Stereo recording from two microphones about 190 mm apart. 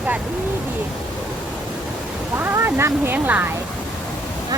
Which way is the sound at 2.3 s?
10° right (ahead or behind).